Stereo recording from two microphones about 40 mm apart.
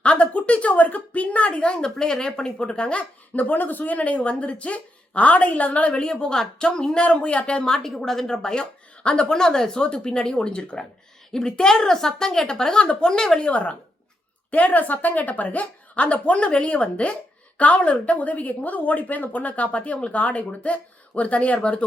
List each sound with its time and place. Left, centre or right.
0.0 s speech: left
1.7 s speech: centre
3.3 s a woman's voice: left
5.9 s speech: left
6.3 s a woman's voice: centre
7.0 s a woman's voice: left
7.6 s a woman's voice: centre
12.8 s speech: left
13.1 s a woman's voice: centre
13.4 s a woman's voice: left